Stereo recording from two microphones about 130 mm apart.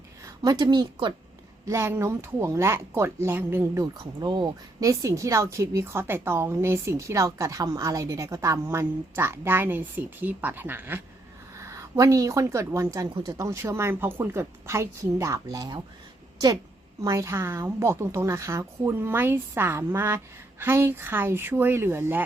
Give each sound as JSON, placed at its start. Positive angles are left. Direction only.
{"t": 0.3, "sound": "a woman's voice", "side_deg": -30}
{"t": 1.6, "sound": "speech", "side_deg": -20}
{"t": 4.0, "sound": "speech", "side_deg": -35}
{"t": 13.1, "sound": "speech", "side_deg": -35}
{"t": 13.4, "sound": "speech", "side_deg": -25}
{"t": 17.0, "sound": "speech", "side_deg": -25}